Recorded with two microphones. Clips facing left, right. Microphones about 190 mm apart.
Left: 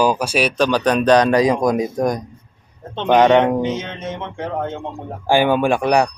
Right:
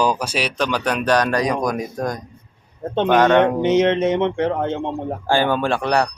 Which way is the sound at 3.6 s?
75° right (ahead or behind).